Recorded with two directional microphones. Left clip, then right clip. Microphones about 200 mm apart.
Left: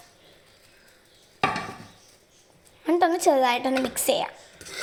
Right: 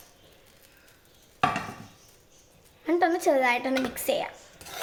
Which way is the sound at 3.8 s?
15° left (ahead or behind).